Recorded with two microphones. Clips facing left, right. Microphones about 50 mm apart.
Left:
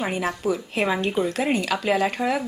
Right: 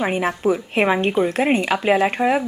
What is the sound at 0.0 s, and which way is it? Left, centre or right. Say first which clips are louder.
A woman's voice: right 5 dB; right.